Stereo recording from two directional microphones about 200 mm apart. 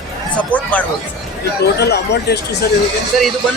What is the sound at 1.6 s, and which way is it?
Speech, 55° left (ahead or behind).